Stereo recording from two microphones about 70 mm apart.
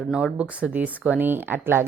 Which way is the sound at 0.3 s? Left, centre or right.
Right.